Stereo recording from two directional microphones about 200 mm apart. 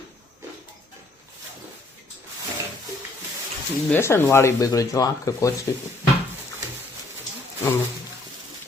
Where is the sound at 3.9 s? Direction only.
10° left (ahead or behind).